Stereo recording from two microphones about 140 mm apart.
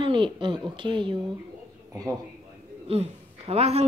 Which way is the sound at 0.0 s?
35° right (ahead or behind).